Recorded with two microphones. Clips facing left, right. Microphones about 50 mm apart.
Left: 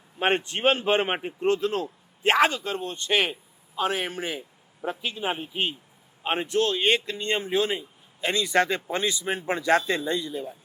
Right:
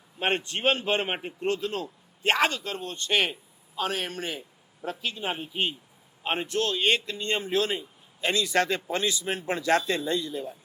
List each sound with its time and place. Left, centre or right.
0.2 s a man's voice: left
2.2 s a man's voice: centre
3.1 s a man's voice: centre
8.4 s a man's voice: centre